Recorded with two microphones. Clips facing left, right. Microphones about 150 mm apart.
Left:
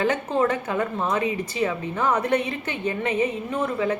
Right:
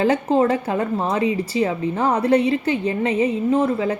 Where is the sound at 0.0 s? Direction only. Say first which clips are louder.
Right 5 dB; 30° right (ahead or behind).